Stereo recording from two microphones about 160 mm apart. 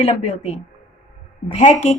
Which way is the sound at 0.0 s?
45° left (ahead or behind).